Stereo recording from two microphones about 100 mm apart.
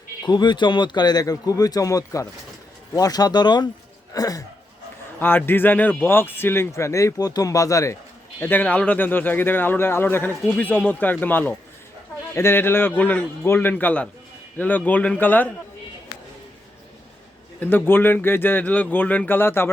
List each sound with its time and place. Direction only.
0.2 s speech: 45° left (ahead or behind)
5.2 s speech: 20° left (ahead or behind)
8.4 s a man's voice: 20° left (ahead or behind)
17.6 s speech: 20° left (ahead or behind)